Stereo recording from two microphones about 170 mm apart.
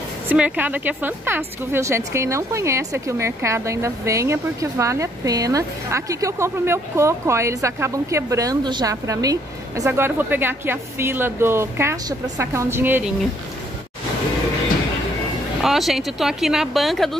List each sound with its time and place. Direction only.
0.3 s speech: 10° right (ahead or behind)
15.6 s a woman's voice: centre (ahead or behind)